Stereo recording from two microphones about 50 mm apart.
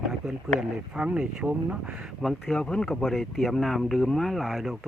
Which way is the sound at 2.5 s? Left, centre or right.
Centre.